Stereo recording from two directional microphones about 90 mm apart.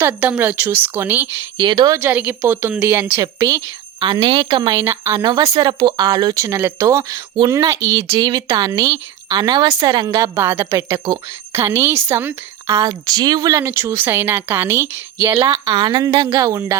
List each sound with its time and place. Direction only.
0.0 s a woman's voice: 15° right (ahead or behind)
1.5 s a woman's voice: 60° right (ahead or behind)
2.0 s a woman's voice: 20° right (ahead or behind)
3.2 s speech: 35° right (ahead or behind)
4.0 s a woman's voice: 60° right (ahead or behind)
4.8 s speech: 30° right (ahead or behind)
5.2 s speech: 55° right (ahead or behind)
6.3 s speech: 35° right (ahead or behind)
8.5 s speech: 50° right (ahead or behind)
10.3 s a woman's voice: 25° right (ahead or behind)
13.1 s speech: 50° right (ahead or behind)
13.7 s a woman's voice: 25° right (ahead or behind)
15.4 s a woman's voice: 85° right; by 16.0 s 55° right (ahead or behind)
16.3 s speech: 35° right (ahead or behind)